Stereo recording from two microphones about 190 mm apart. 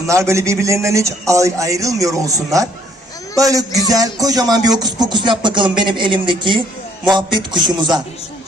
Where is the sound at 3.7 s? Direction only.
20° left (ahead or behind).